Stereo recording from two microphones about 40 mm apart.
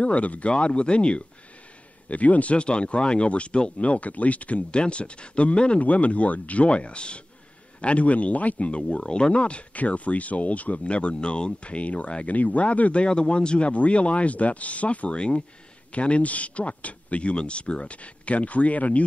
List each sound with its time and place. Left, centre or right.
0.0 s speech: left
2.0 s speech: left
13.0 s speech: left